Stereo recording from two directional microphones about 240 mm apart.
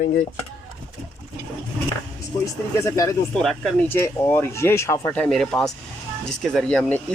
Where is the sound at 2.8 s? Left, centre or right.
Centre.